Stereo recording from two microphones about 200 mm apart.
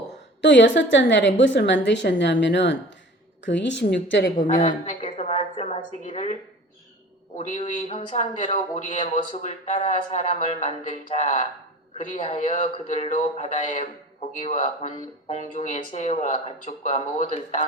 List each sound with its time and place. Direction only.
0.4 s a woman's voice: 65° left (ahead or behind)
4.4 s a woman's voice: 40° left (ahead or behind)
7.3 s a man's voice: 40° left (ahead or behind)